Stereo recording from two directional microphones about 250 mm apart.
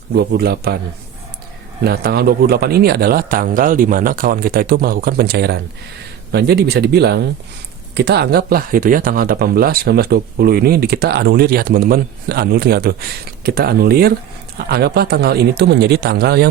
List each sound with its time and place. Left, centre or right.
0.1 s speech: right
1.8 s speech: right